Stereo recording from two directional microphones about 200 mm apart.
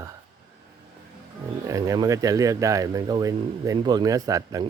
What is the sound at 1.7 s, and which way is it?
Speech, 15° right (ahead or behind).